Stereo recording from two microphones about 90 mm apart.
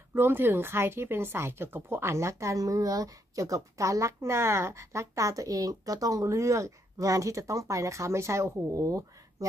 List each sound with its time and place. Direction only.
0.1 s speech: 25° right (ahead or behind)